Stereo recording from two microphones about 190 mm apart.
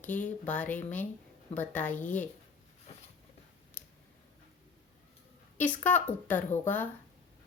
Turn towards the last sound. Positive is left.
turn(degrees=10)  # may be behind; listen again after turning